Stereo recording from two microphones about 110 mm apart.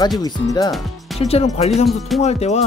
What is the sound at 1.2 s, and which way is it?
Speech, 70° left (ahead or behind).